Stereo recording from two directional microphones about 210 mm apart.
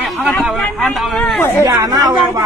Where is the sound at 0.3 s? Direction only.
Centre (ahead or behind).